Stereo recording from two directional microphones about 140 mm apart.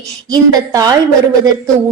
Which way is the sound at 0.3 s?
25° right (ahead or behind).